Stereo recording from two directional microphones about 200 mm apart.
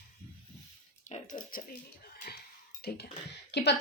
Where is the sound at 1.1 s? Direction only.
40° left (ahead or behind).